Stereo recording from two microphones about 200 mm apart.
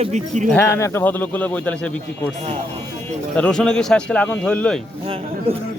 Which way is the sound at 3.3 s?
5° left (ahead or behind).